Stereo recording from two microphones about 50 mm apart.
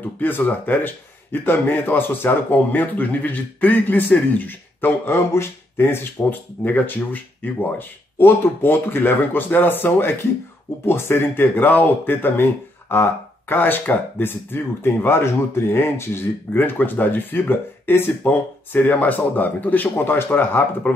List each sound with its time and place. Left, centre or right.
0.2 s speech: left
5.0 s speech: left
6.2 s speech: left